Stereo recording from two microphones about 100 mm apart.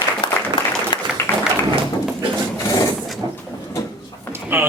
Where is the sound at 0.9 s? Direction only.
50° left (ahead or behind).